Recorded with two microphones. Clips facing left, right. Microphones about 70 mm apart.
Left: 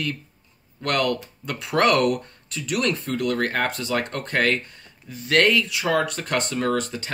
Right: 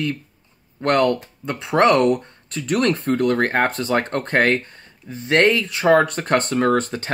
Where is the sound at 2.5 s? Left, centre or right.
Right.